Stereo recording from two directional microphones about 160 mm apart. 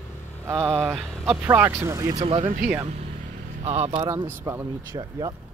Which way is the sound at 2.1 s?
35° right (ahead or behind).